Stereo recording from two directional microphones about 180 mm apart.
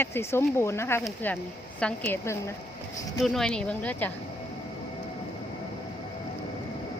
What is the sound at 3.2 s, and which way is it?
Speech, centre (ahead or behind).